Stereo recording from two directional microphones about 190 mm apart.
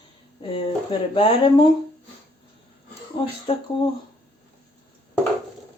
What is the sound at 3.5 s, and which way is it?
Speech, 30° left (ahead or behind).